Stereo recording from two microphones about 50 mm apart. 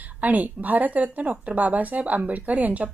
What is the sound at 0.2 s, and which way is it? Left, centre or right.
A woman's voice, right.